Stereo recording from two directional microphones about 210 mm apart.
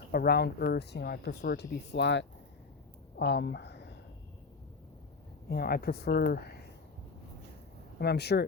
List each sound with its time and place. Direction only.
0.1 s speech: 50° left (ahead or behind)
3.2 s a sound: 55° left (ahead or behind)
5.5 s speech: 45° left (ahead or behind)
7.9 s speech: 50° left (ahead or behind)